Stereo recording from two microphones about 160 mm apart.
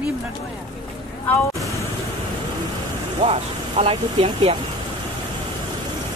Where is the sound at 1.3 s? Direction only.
20° left (ahead or behind).